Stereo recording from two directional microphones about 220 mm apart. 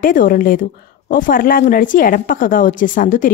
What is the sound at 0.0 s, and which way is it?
A woman's voice, 40° left (ahead or behind).